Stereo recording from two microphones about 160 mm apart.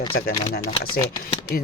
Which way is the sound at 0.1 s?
75° left (ahead or behind).